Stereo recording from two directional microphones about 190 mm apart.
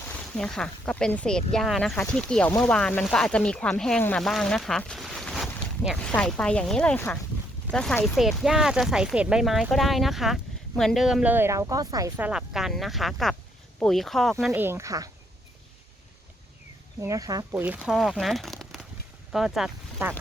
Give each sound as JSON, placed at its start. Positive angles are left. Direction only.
{"t": 0.3, "sound": "speech", "side_deg": 5}
{"t": 14.5, "sound": "speech", "side_deg": -10}
{"t": 17.0, "sound": "speech", "side_deg": -15}